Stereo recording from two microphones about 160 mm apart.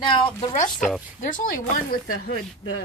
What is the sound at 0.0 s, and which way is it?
Speech, 30° left (ahead or behind).